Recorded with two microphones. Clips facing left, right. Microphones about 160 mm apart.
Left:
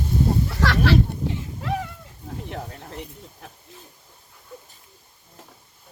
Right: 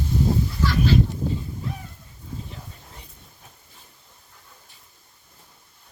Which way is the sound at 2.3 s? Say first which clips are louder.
Left 5 dB; 70° left (ahead or behind).